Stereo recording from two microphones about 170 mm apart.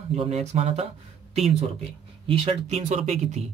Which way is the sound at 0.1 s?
40° right (ahead or behind).